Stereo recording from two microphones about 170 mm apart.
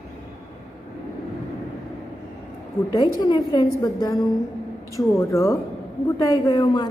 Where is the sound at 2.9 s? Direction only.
20° left (ahead or behind).